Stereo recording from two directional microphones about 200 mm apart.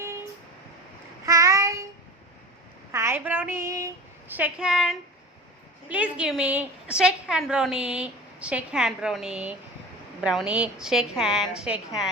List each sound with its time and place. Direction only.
1.2 s child singing: 15° right (ahead or behind)
2.9 s a woman's voice: 10° right (ahead or behind)